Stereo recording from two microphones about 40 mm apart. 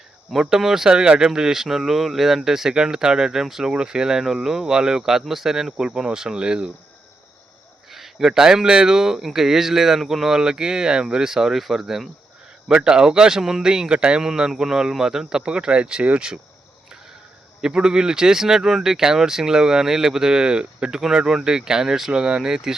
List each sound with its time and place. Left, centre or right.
0.3 s speech: centre
3.7 s speech: centre
5.7 s speech: centre
7.9 s a sound: centre
8.7 s speech: centre
12.6 s speech: right
17.8 s speech: centre